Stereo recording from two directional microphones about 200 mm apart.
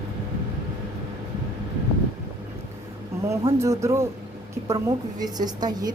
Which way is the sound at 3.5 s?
15° right (ahead or behind).